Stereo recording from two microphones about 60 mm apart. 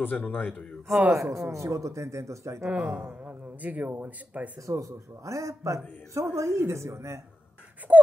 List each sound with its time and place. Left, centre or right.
0.0 s a man's voice: left
1.1 s speech: right
2.7 s speech: right
4.6 s speech: right
7.9 s speech: right